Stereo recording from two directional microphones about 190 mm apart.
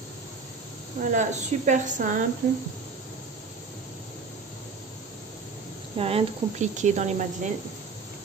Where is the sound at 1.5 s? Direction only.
35° right (ahead or behind).